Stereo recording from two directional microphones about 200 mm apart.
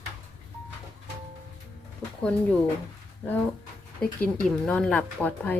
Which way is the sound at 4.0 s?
5° left (ahead or behind).